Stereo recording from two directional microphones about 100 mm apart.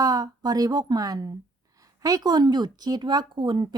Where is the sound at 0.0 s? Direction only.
40° right (ahead or behind).